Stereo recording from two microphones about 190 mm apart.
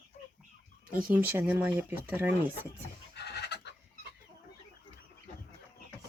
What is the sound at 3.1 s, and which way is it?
Chicken, 60° left (ahead or behind).